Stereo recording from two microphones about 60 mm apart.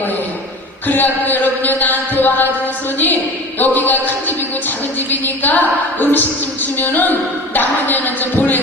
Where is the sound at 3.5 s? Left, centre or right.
Left.